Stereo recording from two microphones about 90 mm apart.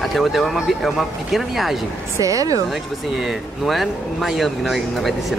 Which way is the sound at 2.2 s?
40° right (ahead or behind).